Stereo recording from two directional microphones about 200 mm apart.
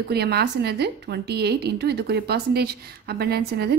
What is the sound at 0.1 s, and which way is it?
A woman's voice, 55° right (ahead or behind).